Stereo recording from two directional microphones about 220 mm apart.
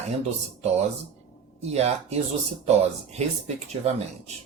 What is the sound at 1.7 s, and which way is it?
Speech, 30° right (ahead or behind).